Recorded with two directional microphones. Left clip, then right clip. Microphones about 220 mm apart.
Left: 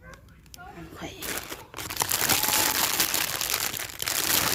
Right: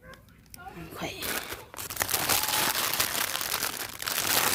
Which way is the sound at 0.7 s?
15° right (ahead or behind).